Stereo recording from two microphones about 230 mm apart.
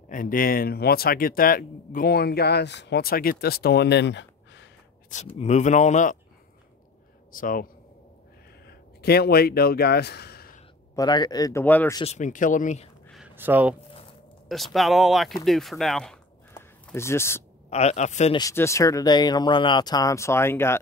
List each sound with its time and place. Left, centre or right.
0.1 s speech: left
5.1 s speech: left
7.3 s speech: left
11.0 s speech: centre
12.0 s speech: left
13.0 s a sound: centre
14.5 s speech: centre
17.6 s speech: left
18.4 s speech: centre